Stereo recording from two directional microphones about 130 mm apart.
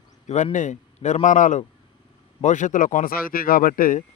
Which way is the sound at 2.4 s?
70° left (ahead or behind).